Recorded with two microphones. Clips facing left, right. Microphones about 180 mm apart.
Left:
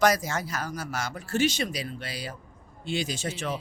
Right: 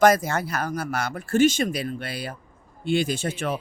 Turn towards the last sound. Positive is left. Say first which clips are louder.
# right 5 dB
turn(degrees=-55)  # may be behind; listen again after turning